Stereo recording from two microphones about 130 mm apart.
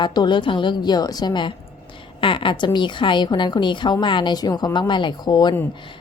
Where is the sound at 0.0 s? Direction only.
35° left (ahead or behind).